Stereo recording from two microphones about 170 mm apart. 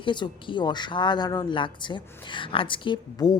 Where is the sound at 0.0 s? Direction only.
30° left (ahead or behind).